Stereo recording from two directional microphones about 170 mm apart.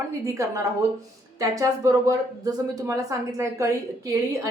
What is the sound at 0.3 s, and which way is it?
A woman's voice, 15° right (ahead or behind).